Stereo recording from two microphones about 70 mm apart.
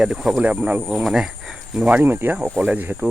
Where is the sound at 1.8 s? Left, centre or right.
Centre.